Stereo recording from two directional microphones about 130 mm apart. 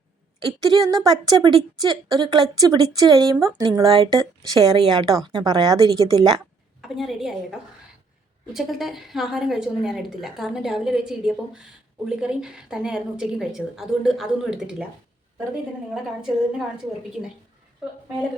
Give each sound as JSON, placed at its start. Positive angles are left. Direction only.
{"t": 0.7, "sound": "a woman's voice", "side_deg": -30}
{"t": 6.8, "sound": "a woman's voice", "side_deg": 0}
{"t": 8.5, "sound": "a woman's voice", "side_deg": 0}
{"t": 16.2, "sound": "a woman's voice", "side_deg": -5}